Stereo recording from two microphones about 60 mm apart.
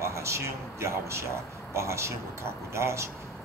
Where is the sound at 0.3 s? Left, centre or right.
Right.